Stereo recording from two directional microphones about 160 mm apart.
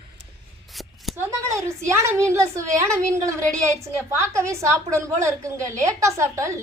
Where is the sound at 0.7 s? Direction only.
Centre (ahead or behind).